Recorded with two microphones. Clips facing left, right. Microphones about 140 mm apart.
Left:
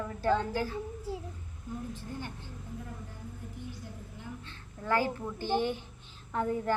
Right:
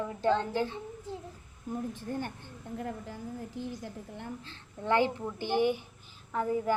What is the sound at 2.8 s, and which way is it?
Speech, 85° right.